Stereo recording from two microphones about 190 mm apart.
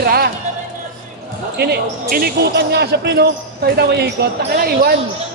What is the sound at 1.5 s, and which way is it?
Speech, 60° right (ahead or behind).